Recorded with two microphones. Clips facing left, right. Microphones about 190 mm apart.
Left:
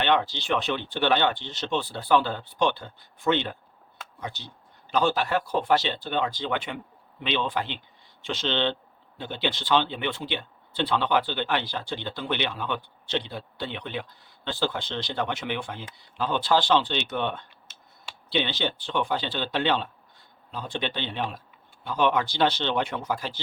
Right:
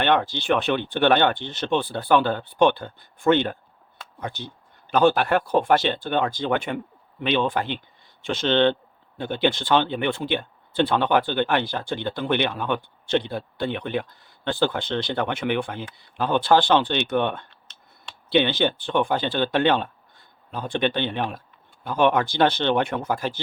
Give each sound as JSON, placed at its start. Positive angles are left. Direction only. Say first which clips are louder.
{"t": 0.0, "sound": "speech", "louder": "right 3 dB", "side_deg": -50}